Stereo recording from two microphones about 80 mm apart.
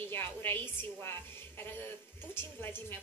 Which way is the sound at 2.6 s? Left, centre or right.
Left.